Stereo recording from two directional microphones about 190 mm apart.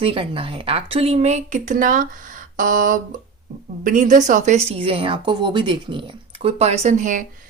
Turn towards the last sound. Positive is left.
turn(degrees=-40)  # may be behind; listen again after turning